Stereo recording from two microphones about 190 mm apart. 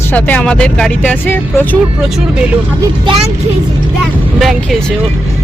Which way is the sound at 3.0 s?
30° right (ahead or behind).